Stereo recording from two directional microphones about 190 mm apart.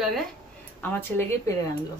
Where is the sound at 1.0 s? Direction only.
10° left (ahead or behind).